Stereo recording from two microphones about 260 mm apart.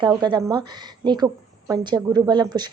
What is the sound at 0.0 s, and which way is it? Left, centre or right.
A woman's voice, centre.